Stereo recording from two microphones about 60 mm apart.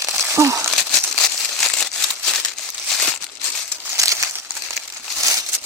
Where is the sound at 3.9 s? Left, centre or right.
Right.